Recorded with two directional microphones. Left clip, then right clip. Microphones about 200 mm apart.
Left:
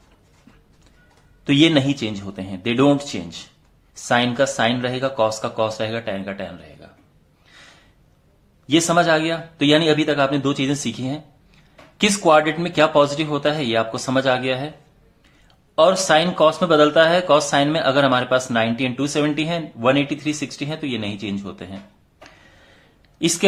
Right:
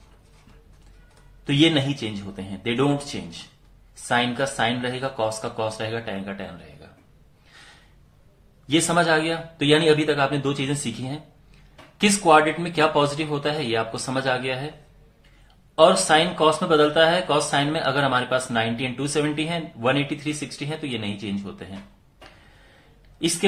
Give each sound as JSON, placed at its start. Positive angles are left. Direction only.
{"t": 1.5, "sound": "speech", "side_deg": 35}
{"t": 8.6, "sound": "speech", "side_deg": 25}
{"t": 15.7, "sound": "speech", "side_deg": 30}